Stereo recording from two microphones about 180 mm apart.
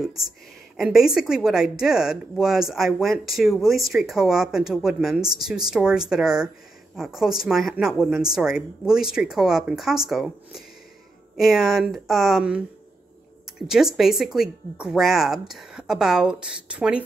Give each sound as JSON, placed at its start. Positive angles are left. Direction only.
{"t": 0.7, "sound": "speech", "side_deg": 0}